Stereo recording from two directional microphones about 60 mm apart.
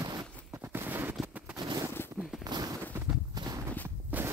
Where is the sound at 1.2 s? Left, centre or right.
Centre.